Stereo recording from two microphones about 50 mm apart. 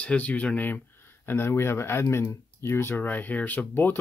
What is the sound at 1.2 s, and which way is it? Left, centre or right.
Speech, left.